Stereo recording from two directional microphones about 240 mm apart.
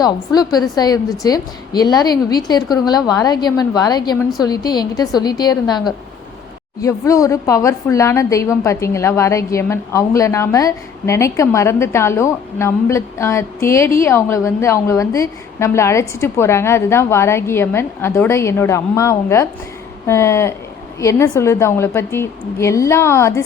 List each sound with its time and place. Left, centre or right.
0.0 s a woman's voice: centre